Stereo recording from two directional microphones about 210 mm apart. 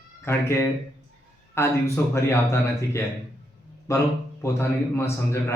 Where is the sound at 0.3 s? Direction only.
10° left (ahead or behind).